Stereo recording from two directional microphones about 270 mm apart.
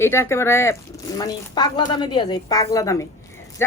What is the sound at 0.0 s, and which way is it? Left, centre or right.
A woman's voice, centre.